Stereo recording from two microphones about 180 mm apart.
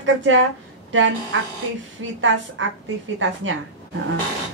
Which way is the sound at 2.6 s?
90° right.